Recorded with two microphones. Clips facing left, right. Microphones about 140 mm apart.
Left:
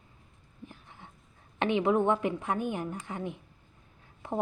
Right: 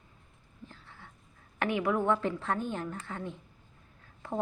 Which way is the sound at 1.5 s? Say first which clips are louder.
Left 4 dB; 20° left (ahead or behind).